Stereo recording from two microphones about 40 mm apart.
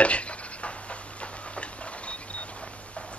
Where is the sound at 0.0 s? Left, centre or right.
Left.